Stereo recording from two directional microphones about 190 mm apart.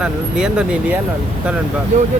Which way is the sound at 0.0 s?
5° right (ahead or behind).